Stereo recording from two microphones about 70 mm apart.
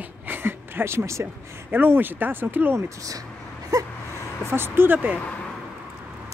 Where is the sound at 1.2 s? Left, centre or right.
Right.